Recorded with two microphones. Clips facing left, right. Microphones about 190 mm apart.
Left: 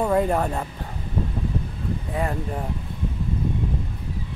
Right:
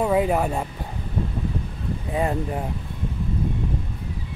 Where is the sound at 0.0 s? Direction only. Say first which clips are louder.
Right 1 dB; 5° right (ahead or behind).